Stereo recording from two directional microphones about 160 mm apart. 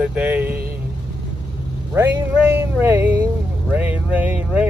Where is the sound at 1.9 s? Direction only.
15° right (ahead or behind).